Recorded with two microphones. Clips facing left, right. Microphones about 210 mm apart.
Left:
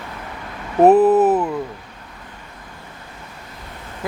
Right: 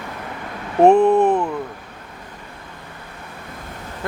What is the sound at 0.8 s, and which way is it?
Speech, 5° left (ahead or behind).